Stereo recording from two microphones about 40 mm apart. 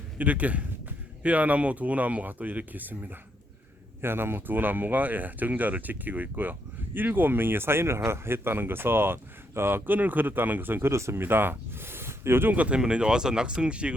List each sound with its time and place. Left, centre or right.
0.2 s speech: right
4.0 s speech: right
12.5 s speech: right
12.8 s speech: right